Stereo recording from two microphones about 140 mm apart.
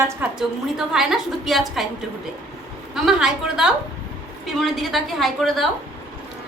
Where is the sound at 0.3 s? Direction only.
5° right (ahead or behind).